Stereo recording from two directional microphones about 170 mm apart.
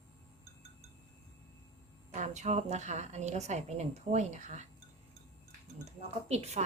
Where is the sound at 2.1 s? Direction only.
45° right (ahead or behind).